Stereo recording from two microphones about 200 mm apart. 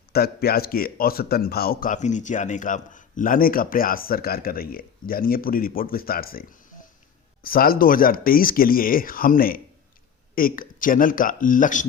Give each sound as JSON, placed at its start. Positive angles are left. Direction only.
{"t": 0.1, "sound": "speech", "side_deg": 50}